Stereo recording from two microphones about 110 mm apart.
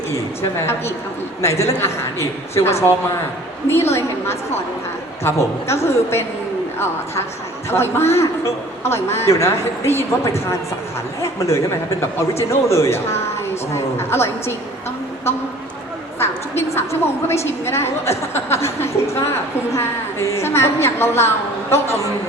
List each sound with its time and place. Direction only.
0.6 s a woman's voice: 20° left (ahead or behind)
7.7 s a woman's voice: 20° left (ahead or behind)
16.1 s a woman's voice: 20° left (ahead or behind)